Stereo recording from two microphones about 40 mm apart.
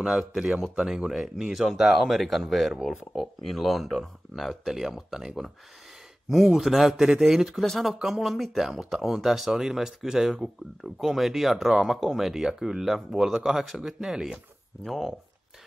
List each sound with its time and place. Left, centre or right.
0.7 s speech: centre
7.6 s speech: centre
7.9 s speech: centre
8.2 s speech: centre
10.4 s speech: centre
14.9 s speech: centre